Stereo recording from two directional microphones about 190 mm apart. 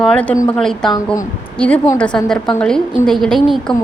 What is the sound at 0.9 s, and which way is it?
Speech, 20° left (ahead or behind).